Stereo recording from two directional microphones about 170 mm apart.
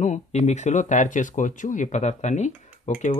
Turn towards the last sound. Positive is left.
turn(degrees=45)  # may be behind; listen again after turning